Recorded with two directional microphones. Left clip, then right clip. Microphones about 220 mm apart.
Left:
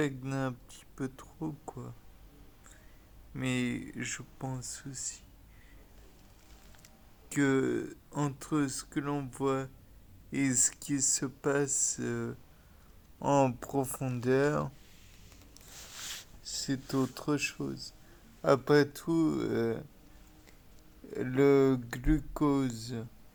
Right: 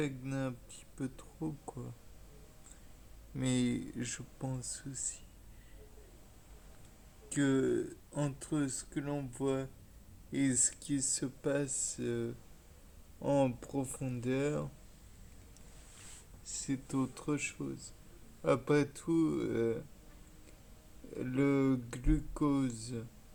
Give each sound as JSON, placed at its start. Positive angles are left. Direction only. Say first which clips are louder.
{"t": 0.0, "sound": "speech", "louder": "left 4 dB", "side_deg": 35}
{"t": 3.3, "sound": "speech", "louder": "left 1 dB", "side_deg": 5}
{"t": 4.4, "sound": "speech", "louder": "left 2 dB", "side_deg": 15}
{"t": 7.3, "sound": "speech", "louder": "left 3 dB", "side_deg": 35}
{"t": 16.9, "sound": "speech", "louder": "left 5 dB", "side_deg": 35}
{"t": 21.1, "sound": "speech", "louder": "left 7 dB", "side_deg": 35}